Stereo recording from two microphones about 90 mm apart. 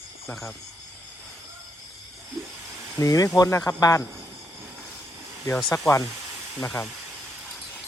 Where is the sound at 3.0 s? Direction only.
40° left (ahead or behind).